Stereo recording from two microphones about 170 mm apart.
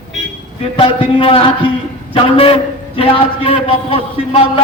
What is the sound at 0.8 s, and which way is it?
A man's voice, 35° left (ahead or behind).